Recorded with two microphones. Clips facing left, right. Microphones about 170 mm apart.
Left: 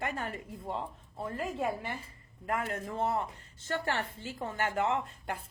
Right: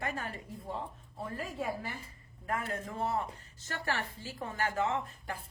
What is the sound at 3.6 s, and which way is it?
A woman's voice, 25° left (ahead or behind).